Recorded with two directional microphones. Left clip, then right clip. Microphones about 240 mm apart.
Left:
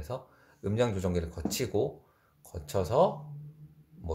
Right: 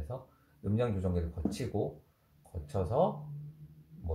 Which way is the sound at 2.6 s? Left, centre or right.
Left.